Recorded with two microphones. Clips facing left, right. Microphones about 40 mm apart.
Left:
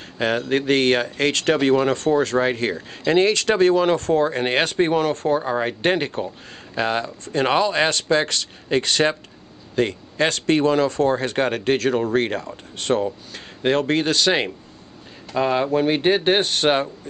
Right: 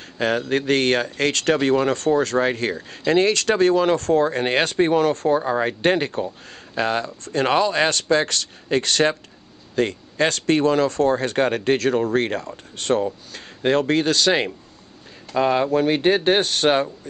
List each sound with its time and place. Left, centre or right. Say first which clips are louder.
0.5 s speech: left 3 dB; centre
5.3 s speech: right 1 dB; centre
5.9 s speech: right 1 dB; centre
12.0 s speech: even; centre
13.7 s a man's voice: right 1 dB; left
15.3 s speech: right 1 dB; centre
15.7 s speech: even; centre
16.3 s a man's voice: even; left